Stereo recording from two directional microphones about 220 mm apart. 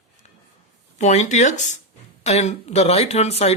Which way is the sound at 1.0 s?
30° left (ahead or behind).